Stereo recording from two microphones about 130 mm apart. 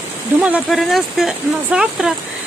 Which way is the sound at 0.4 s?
5° right (ahead or behind).